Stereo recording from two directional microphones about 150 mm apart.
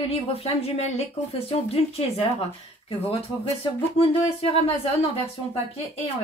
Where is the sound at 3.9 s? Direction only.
40° left (ahead or behind).